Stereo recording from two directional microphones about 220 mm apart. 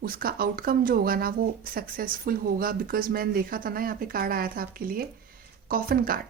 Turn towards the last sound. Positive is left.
turn(degrees=-40)  # may be behind; listen again after turning